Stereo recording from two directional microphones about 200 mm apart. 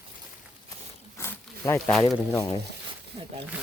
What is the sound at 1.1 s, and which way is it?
Zipper, 10° left (ahead or behind).